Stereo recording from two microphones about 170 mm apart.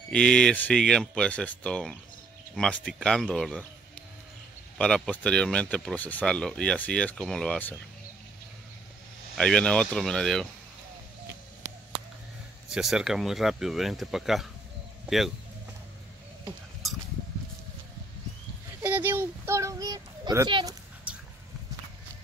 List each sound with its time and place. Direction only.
0.1 s speech: 5° left (ahead or behind)
4.7 s speech: 5° left (ahead or behind)
9.3 s speech: 5° left (ahead or behind)
12.7 s speech: 5° right (ahead or behind)
18.8 s child singing: 10° right (ahead or behind)